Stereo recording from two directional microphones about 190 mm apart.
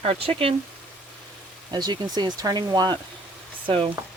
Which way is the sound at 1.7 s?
20° right (ahead or behind).